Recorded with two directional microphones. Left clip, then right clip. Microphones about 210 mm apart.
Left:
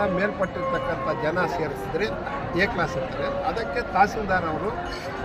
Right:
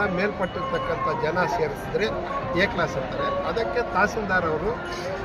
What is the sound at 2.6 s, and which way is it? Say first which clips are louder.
Speech: even; 10° left (ahead or behind).